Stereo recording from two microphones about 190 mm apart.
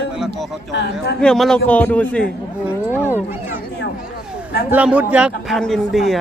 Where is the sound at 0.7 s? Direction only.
65° left (ahead or behind).